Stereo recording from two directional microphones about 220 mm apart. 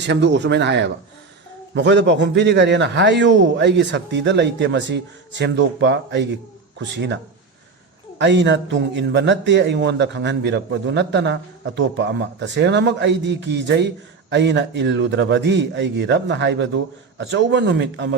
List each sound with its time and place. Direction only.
0.0 s a man's voice: 50° right (ahead or behind)
8.2 s a man's voice: 55° right (ahead or behind)